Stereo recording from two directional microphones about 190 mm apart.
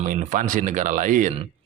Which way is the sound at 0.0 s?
45° right (ahead or behind).